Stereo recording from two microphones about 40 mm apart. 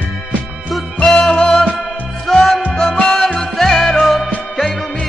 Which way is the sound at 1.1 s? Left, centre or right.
Left.